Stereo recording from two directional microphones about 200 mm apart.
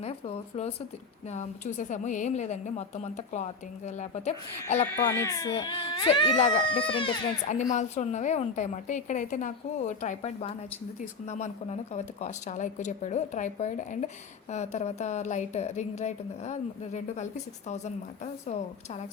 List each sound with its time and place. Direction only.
0.0 s a woman's voice: 30° left (ahead or behind)
4.9 s speech: 15° left (ahead or behind)
7.4 s a woman's voice: 35° left (ahead or behind)